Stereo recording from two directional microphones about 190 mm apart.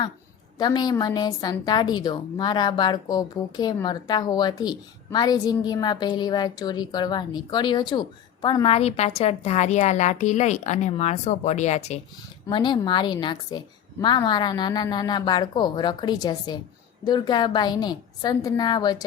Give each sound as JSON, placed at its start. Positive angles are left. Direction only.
{"t": 0.6, "sound": "a woman's voice", "side_deg": 20}
{"t": 12.5, "sound": "a woman's voice", "side_deg": 25}